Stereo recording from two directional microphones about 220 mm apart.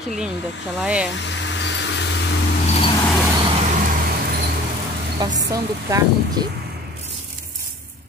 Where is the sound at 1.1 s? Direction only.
55° left (ahead or behind).